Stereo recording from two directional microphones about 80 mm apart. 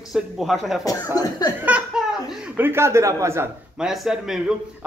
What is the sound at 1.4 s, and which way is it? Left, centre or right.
Laughter, left.